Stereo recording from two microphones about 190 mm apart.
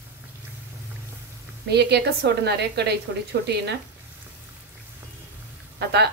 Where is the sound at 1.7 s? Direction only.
60° right (ahead or behind).